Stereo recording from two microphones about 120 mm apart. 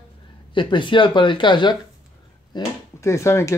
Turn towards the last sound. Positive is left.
turn(degrees=25)  # may be behind; listen again after turning